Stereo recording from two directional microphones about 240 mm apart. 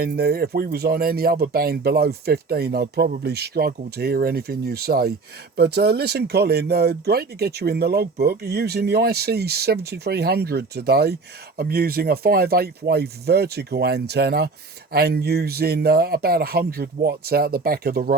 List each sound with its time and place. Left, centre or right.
0.0 s speech: right